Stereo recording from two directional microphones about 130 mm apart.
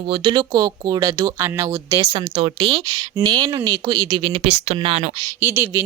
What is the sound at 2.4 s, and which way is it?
Speech, 40° right (ahead or behind).